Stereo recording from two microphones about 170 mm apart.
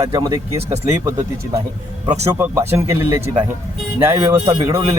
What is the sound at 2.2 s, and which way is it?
A man's voice, 15° right (ahead or behind).